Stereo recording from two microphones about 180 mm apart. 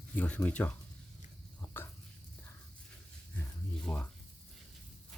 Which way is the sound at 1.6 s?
10° left (ahead or behind).